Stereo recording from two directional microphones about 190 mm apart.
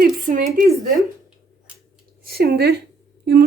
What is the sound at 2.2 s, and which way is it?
Speech, 55° right (ahead or behind).